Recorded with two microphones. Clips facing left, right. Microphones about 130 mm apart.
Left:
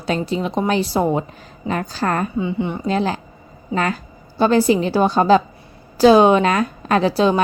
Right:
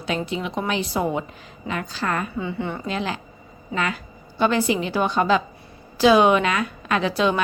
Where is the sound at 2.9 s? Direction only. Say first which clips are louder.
Left 7 dB; 35° left (ahead or behind).